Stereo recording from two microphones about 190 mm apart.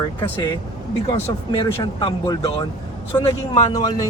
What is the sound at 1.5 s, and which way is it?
Speech, 25° left (ahead or behind).